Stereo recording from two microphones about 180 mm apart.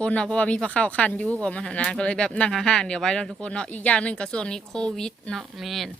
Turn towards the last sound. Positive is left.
turn(degrees=0)  # may be behind; listen again after turning